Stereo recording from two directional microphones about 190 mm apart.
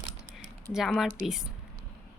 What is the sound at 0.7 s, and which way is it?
Speech, centre (ahead or behind).